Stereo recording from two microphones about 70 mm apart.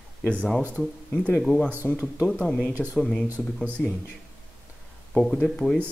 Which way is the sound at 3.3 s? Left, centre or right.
Right.